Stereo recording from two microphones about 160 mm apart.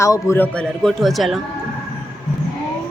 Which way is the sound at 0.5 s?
5° left (ahead or behind).